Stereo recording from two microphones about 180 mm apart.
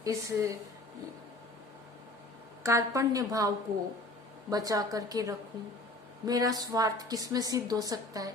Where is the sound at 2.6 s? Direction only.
15° right (ahead or behind).